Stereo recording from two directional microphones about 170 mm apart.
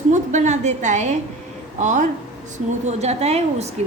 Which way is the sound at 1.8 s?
45° right (ahead or behind).